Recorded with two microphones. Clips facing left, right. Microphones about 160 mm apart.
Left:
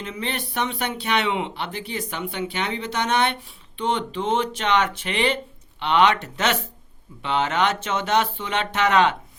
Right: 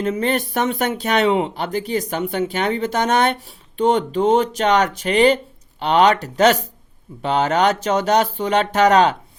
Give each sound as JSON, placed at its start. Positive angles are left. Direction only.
{"t": 0.0, "sound": "speech", "side_deg": -45}